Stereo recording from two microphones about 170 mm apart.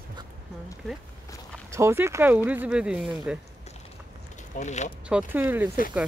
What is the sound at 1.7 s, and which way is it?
Speech, 15° right (ahead or behind).